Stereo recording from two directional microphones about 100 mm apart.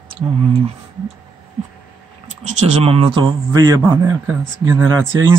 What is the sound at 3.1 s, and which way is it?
Speech, 45° right (ahead or behind).